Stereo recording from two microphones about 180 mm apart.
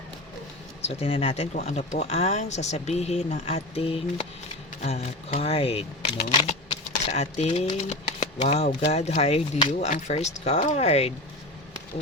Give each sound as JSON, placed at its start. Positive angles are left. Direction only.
{"t": 0.8, "sound": "speech", "side_deg": 35}